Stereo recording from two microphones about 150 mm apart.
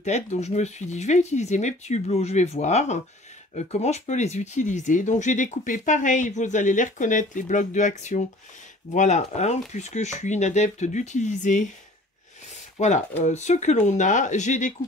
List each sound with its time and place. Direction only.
0.0 s speech: 50° left (ahead or behind)
12.7 s speech: 55° left (ahead or behind)